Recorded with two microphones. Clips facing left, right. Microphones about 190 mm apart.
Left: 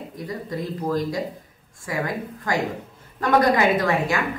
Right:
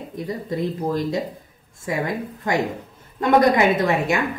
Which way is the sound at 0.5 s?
25° right (ahead or behind).